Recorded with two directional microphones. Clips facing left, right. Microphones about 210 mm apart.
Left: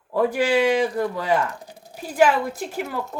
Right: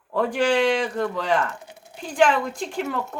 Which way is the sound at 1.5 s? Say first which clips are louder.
Left 2 dB; 35° left (ahead or behind).